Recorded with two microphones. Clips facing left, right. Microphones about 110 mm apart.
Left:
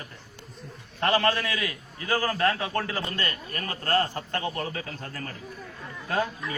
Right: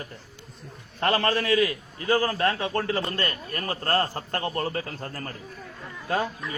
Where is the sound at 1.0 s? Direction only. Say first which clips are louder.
Even; 30° right (ahead or behind).